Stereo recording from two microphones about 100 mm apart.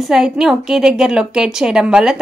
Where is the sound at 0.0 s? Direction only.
5° right (ahead or behind).